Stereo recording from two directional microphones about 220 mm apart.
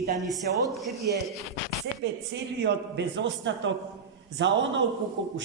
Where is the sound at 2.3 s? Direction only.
50° right (ahead or behind).